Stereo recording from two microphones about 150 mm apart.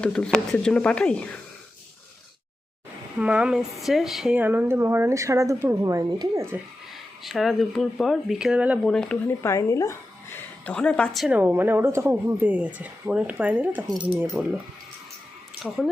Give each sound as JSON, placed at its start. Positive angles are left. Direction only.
{"t": 0.0, "sound": "speech", "side_deg": 5}
{"t": 3.2, "sound": "a woman's voice", "side_deg": -10}
{"t": 7.2, "sound": "speech", "side_deg": 0}
{"t": 8.8, "sound": "speech", "side_deg": 5}
{"t": 9.2, "sound": "a woman's voice", "side_deg": 20}
{"t": 11.3, "sound": "a woman's voice", "side_deg": -15}